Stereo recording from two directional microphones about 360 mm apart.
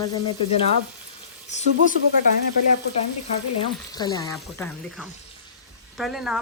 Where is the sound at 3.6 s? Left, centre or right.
Centre.